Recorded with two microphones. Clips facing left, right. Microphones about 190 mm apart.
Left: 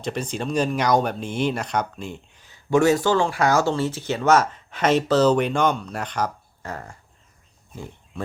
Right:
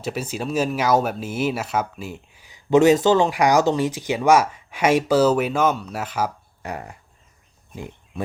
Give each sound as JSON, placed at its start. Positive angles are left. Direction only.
{"t": 0.0, "sound": "speech", "side_deg": -5}
{"t": 6.6, "sound": "speech", "side_deg": -15}
{"t": 7.8, "sound": "a sound", "side_deg": -15}